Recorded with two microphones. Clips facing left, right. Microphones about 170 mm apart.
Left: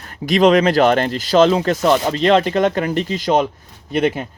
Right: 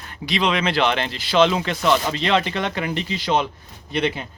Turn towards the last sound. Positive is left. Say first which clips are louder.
# left 5 dB
turn(degrees=45)  # may be behind; listen again after turning